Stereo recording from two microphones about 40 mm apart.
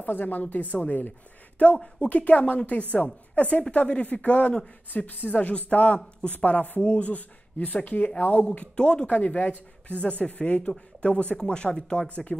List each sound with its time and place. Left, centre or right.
0.0 s speech: left
0.4 s speech: left
4.9 s speech: left
8.7 s speech: left
9.0 s speech: left